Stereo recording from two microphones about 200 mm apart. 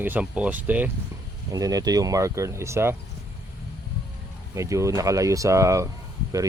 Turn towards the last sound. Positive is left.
turn(degrees=-15)  # may be behind; listen again after turning